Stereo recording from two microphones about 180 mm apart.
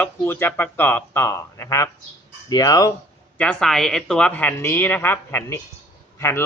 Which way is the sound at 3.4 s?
5° left (ahead or behind).